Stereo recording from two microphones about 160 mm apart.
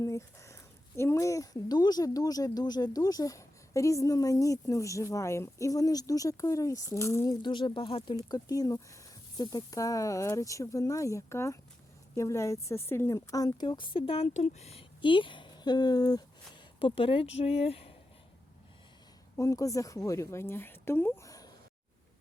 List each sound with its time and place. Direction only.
0.0 s speech: 20° left (ahead or behind)
7.4 s speech: 30° left (ahead or behind)
19.4 s speech: 20° left (ahead or behind)